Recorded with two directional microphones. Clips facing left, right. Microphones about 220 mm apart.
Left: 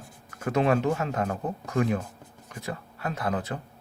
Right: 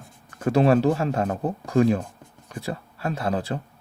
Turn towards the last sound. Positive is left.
turn(degrees=-30)  # may be behind; listen again after turning